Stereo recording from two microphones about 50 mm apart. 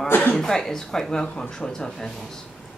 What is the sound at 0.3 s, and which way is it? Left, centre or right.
Speech, centre.